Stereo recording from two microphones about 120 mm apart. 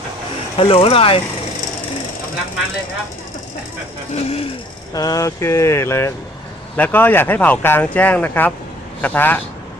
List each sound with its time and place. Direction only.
0.5 s speech: 50° left (ahead or behind)
4.1 s speech: 55° left (ahead or behind)
4.9 s a man's voice: 30° left (ahead or behind)